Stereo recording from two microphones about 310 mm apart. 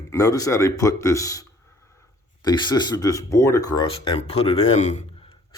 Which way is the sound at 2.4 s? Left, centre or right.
Centre.